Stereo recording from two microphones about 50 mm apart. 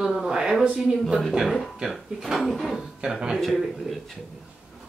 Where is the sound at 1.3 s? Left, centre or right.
Centre.